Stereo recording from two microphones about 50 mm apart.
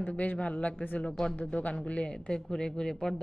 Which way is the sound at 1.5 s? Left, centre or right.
Left.